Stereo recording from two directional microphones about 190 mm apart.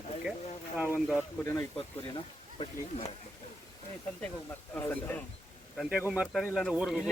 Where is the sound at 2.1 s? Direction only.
25° left (ahead or behind).